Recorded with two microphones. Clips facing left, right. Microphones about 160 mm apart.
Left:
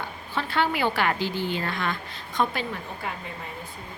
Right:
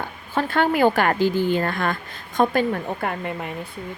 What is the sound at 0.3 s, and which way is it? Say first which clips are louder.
A woman's voice: right 6 dB; 50° right (ahead or behind).